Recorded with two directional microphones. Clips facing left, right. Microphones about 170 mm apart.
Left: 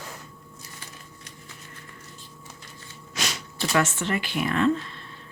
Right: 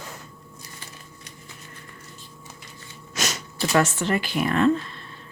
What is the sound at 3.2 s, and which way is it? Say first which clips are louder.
Speech: right 3 dB; 45° right (ahead or behind).